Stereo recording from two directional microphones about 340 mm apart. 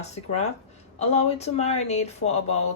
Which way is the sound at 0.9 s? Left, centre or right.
Centre.